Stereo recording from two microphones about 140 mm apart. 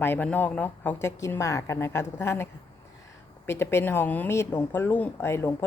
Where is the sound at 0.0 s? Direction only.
15° left (ahead or behind).